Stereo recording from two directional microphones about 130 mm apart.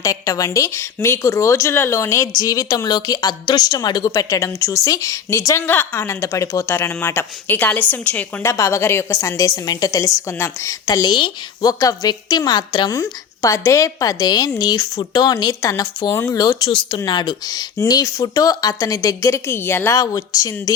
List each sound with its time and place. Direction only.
0.0 s a woman's voice: 25° left (ahead or behind)
10.8 s speech: 35° left (ahead or behind)